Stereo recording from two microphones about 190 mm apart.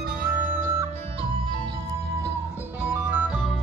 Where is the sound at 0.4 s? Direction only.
45° right (ahead or behind).